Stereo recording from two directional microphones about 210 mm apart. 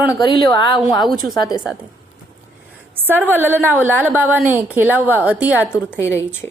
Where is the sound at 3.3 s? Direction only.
10° right (ahead or behind).